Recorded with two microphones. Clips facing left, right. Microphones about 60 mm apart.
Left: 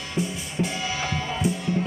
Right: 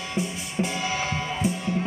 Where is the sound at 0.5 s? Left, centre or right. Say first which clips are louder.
Right 1 dB; centre.